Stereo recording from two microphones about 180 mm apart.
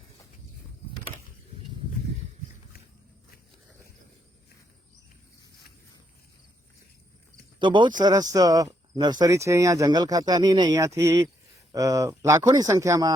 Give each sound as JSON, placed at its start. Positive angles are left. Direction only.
{"t": 7.6, "sound": "speech", "side_deg": -25}